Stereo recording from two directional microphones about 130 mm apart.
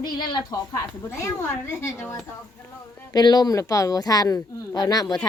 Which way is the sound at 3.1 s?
30° left (ahead or behind).